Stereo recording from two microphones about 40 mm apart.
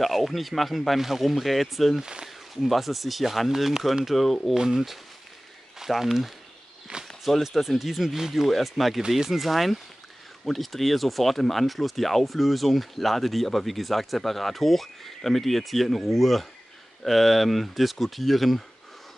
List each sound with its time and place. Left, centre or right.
0.0 s speech: centre
2.0 s speech: centre
2.2 s speech: centre
4.6 s speech: centre
6.9 s walk: right
7.4 s speech: centre